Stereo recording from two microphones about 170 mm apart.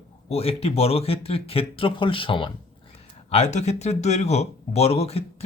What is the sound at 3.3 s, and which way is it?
Speech, 40° left (ahead or behind).